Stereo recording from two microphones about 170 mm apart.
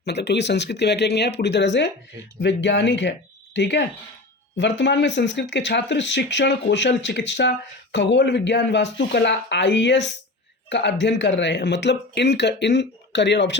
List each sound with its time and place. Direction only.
0.0 s speech: 80° left
1.4 s speech: 90° left